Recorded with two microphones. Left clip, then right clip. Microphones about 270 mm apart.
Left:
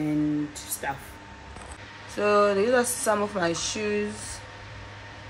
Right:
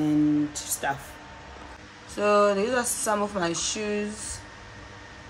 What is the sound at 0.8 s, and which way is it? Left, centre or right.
Speech, right.